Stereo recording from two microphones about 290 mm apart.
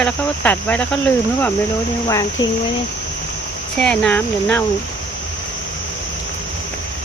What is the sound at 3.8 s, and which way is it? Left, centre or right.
Cricket, centre.